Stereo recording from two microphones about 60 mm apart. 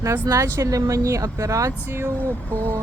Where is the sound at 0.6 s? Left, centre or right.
Right.